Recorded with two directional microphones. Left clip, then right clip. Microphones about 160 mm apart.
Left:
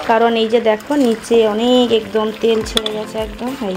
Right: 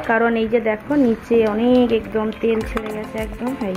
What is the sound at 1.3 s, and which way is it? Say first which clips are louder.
A woman's voice: left 4 dB; 15° left (ahead or behind).